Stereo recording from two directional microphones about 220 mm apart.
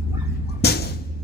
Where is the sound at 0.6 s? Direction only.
45° left (ahead or behind).